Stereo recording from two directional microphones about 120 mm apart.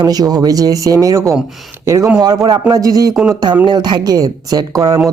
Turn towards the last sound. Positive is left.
turn(degrees=-30)  # may be behind; listen again after turning